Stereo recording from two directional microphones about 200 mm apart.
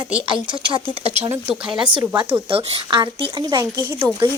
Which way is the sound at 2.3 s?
30° right (ahead or behind).